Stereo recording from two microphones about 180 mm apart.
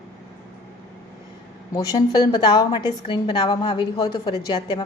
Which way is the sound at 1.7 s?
25° left (ahead or behind).